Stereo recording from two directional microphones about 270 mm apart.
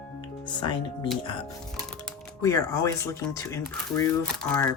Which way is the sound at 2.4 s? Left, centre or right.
Centre.